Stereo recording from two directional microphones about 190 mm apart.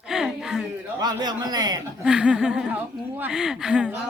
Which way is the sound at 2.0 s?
5° right (ahead or behind).